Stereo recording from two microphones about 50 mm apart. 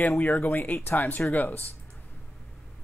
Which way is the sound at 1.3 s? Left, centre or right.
Left.